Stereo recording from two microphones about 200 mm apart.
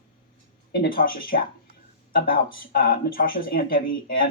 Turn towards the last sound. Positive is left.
turn(degrees=45)  # may be behind; listen again after turning